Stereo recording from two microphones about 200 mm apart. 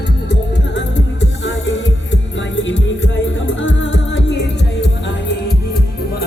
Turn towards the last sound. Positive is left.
turn(degrees=60)  # may be behind; listen again after turning